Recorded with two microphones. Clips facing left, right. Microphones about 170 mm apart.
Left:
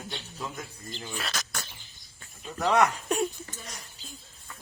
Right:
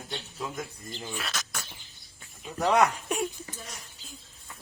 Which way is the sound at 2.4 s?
15° right (ahead or behind).